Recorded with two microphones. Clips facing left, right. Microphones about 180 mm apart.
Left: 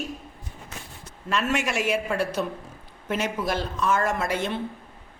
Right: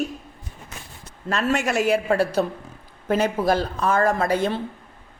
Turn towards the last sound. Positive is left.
turn(degrees=-35)  # may be behind; listen again after turning